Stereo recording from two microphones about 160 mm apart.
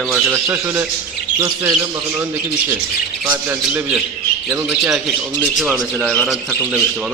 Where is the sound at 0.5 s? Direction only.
15° right (ahead or behind).